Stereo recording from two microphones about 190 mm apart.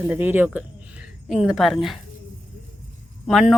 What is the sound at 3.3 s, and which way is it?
Speech, 5° right (ahead or behind).